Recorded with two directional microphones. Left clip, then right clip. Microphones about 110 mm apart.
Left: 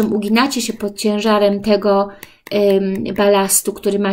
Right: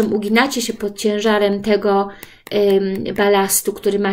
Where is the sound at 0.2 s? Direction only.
45° left (ahead or behind).